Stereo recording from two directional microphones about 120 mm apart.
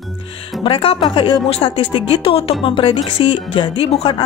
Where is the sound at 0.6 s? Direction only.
50° left (ahead or behind).